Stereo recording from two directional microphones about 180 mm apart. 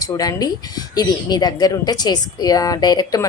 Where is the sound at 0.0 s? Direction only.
20° left (ahead or behind).